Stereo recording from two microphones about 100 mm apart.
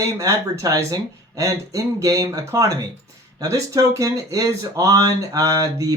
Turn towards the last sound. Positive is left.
turn(degrees=-35)  # may be behind; listen again after turning